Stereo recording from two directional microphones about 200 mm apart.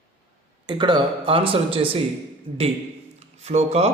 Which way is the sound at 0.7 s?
25° right (ahead or behind).